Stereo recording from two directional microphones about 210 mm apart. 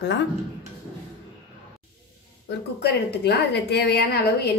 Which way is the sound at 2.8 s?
50° left (ahead or behind).